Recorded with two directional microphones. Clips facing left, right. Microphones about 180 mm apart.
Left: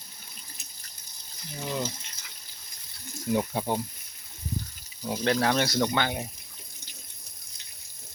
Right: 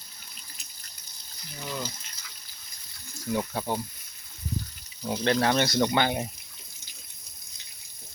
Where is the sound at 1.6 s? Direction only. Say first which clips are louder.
Left 3 dB; 20° left (ahead or behind).